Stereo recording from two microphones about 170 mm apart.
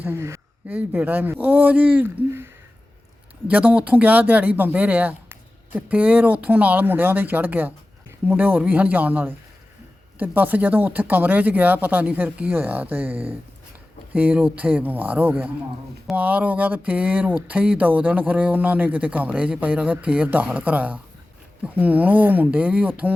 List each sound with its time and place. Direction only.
0.0 s speech: 15° right (ahead or behind)